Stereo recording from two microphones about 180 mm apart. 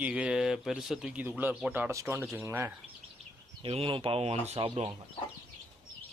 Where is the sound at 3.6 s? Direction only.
30° right (ahead or behind).